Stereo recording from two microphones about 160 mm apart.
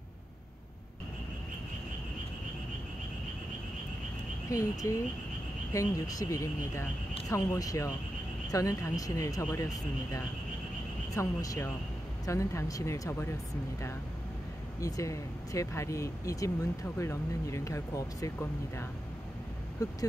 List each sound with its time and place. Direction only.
4.5 s speech: 20° left (ahead or behind)
11.1 s speech: 20° left (ahead or behind)
14.8 s speech: 20° left (ahead or behind)